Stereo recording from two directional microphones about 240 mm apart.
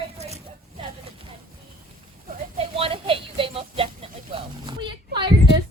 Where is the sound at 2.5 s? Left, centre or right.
Right.